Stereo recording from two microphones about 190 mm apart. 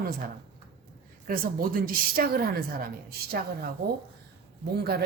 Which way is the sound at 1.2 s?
50° right (ahead or behind).